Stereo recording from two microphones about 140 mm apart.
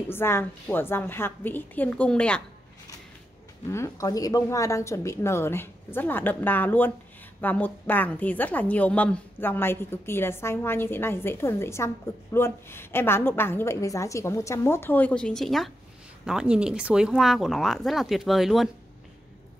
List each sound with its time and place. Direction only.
0.1 s a woman's voice: 15° left (ahead or behind)
3.7 s a woman's voice: 20° left (ahead or behind); by 18.7 s centre (ahead or behind)